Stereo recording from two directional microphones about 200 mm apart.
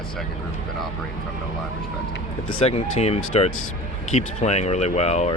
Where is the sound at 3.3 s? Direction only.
30° left (ahead or behind).